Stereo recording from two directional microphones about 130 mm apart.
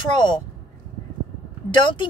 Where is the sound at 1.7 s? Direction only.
35° left (ahead or behind).